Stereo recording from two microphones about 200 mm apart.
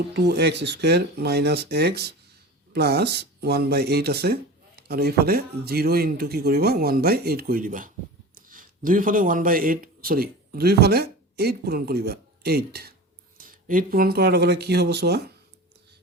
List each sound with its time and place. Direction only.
0.1 s speech: 55° right (ahead or behind)